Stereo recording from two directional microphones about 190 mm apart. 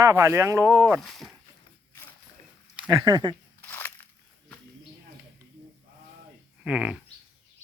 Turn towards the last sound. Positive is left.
turn(degrees=-5)  # may be behind; listen again after turning